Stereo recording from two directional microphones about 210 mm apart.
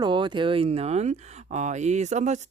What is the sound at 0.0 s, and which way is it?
Speech, 20° right (ahead or behind).